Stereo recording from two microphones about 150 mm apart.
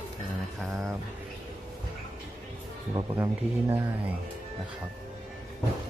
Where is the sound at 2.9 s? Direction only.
15° right (ahead or behind).